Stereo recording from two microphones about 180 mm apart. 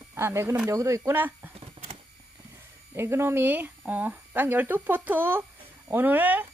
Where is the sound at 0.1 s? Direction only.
15° right (ahead or behind).